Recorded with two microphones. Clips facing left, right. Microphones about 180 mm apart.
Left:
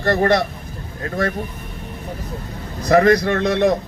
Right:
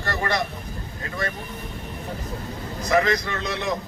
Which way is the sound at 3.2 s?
55° left (ahead or behind).